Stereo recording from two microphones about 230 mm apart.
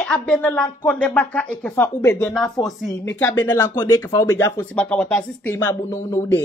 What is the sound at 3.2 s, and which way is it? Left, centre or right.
A woman's voice, centre.